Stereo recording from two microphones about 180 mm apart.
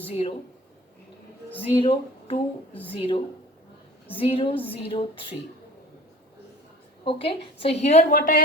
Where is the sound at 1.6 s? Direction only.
30° left (ahead or behind).